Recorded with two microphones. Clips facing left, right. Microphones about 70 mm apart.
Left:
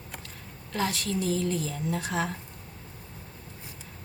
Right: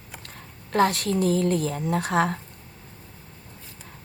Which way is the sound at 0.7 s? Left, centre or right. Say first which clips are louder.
Right 8 dB; right.